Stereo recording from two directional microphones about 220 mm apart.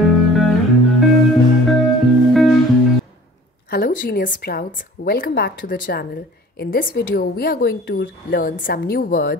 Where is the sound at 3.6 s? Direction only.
40° left (ahead or behind).